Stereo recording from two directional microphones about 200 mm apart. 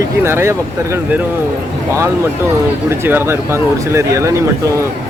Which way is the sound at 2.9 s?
10° right (ahead or behind).